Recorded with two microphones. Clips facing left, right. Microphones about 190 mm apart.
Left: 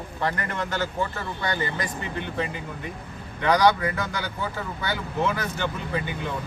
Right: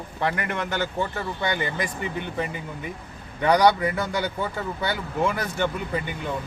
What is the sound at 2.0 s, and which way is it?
Speech, 10° right (ahead or behind).